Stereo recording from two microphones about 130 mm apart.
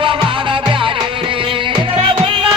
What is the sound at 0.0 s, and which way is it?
Music, 40° right (ahead or behind).